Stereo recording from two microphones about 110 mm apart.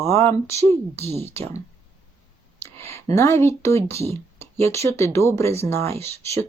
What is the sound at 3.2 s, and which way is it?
Speech, 25° left (ahead or behind).